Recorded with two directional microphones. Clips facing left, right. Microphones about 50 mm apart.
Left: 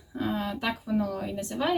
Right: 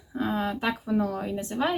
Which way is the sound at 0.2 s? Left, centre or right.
Centre.